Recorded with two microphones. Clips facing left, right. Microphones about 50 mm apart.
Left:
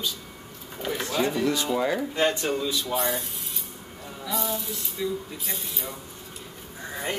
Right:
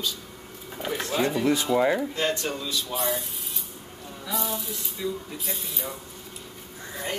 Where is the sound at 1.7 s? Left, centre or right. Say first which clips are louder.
Right 3 dB; centre.